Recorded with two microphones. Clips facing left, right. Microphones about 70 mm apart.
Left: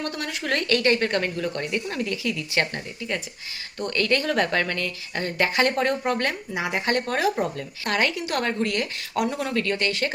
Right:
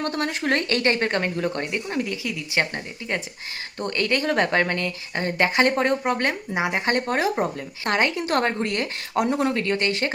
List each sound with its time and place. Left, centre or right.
0.0 s speech: right